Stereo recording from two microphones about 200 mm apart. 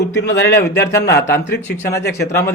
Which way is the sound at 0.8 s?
15° left (ahead or behind).